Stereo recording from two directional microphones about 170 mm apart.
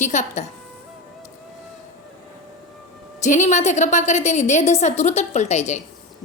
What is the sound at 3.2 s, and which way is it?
A woman's voice, 45° left (ahead or behind).